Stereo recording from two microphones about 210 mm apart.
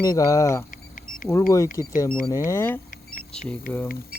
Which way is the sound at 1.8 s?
15° left (ahead or behind).